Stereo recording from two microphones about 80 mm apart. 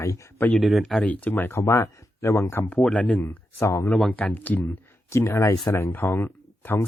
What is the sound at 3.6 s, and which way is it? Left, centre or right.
Speech, left.